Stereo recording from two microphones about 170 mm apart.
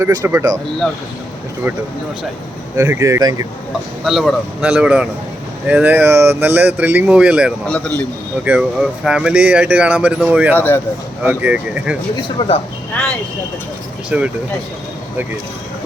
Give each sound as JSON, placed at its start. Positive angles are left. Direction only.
{"t": 0.0, "sound": "speech", "side_deg": -15}
{"t": 1.6, "sound": "speech", "side_deg": -15}
{"t": 4.0, "sound": "speech", "side_deg": 0}
{"t": 7.7, "sound": "speech", "side_deg": 5}
{"t": 8.4, "sound": "speech", "side_deg": -5}
{"t": 10.5, "sound": "speech", "side_deg": 10}
{"t": 11.2, "sound": "speech", "side_deg": -10}
{"t": 12.4, "sound": "speech", "side_deg": 25}
{"t": 12.9, "sound": "speech", "side_deg": 5}
{"t": 14.1, "sound": "speech", "side_deg": -5}